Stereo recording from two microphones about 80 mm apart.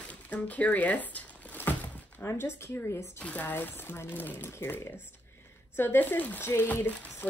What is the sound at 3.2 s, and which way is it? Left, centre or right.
Speech, left.